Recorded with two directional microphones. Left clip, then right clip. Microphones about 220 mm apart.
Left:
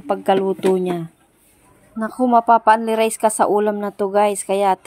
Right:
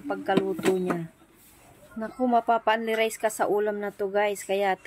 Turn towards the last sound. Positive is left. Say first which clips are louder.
# left 8 dB
turn(degrees=20)  # may be behind; listen again after turning